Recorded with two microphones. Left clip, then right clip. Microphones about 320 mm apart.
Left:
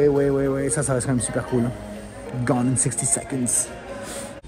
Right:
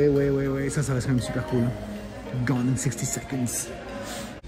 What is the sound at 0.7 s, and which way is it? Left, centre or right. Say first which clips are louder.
Speech: left 6 dB; left.